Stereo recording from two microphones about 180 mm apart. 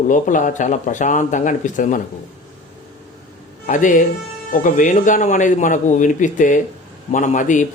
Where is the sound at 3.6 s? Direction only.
45° left (ahead or behind).